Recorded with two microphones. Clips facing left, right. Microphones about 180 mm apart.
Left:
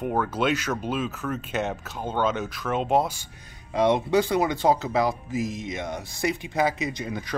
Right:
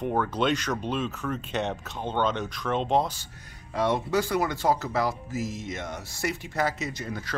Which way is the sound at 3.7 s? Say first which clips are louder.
Left 4 dB; 20° left (ahead or behind).